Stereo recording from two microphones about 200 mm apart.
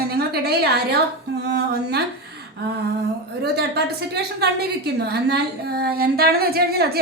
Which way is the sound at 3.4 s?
55° right (ahead or behind).